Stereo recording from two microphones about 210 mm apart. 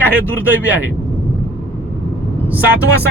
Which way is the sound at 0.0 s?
10° left (ahead or behind).